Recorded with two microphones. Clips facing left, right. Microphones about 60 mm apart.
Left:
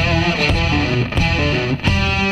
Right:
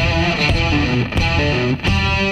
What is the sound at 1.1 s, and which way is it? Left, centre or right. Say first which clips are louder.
Music: left 1 dB; centre.